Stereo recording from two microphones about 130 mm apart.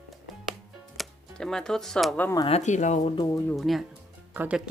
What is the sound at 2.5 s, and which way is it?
Speech, 60° left (ahead or behind).